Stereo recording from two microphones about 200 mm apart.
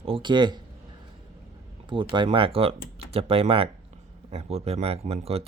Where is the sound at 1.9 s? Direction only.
25° right (ahead or behind).